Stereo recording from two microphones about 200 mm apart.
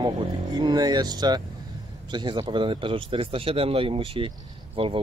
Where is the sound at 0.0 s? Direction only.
20° right (ahead or behind).